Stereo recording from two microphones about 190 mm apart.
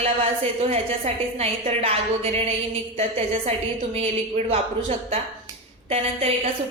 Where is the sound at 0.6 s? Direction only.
35° right (ahead or behind).